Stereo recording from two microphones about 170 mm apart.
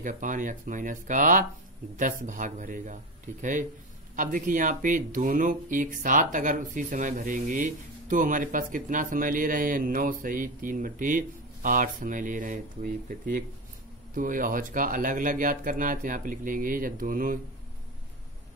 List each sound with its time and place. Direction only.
0.0 s speech: 50° right (ahead or behind)